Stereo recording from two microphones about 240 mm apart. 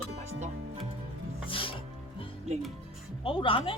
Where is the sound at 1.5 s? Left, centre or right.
Left.